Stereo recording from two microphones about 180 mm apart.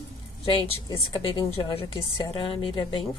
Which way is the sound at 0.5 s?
30° left (ahead or behind).